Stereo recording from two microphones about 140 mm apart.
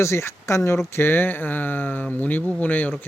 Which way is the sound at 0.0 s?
20° left (ahead or behind).